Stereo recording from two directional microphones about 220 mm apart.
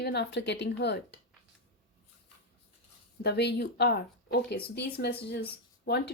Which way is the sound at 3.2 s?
50° left (ahead or behind).